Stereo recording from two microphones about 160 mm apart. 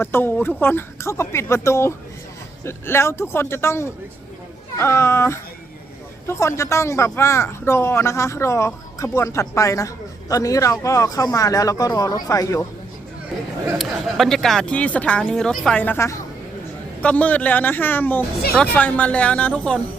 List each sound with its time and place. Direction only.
0.0 s speech: 15° left (ahead or behind)
13.7 s speech: centre (ahead or behind)